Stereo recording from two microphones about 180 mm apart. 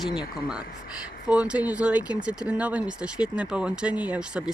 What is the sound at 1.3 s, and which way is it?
Speech, 5° right (ahead or behind).